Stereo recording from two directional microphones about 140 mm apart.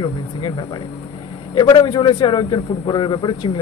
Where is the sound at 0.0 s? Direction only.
35° left (ahead or behind).